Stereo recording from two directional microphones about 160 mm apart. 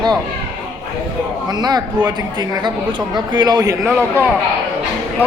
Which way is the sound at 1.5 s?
25° right (ahead or behind).